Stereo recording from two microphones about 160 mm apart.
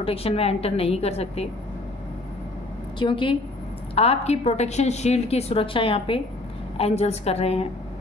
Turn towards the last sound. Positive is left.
turn(degrees=40)  # may be behind; listen again after turning